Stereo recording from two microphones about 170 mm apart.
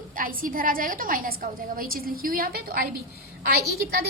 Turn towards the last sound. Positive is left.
turn(degrees=-70)  # may be behind; listen again after turning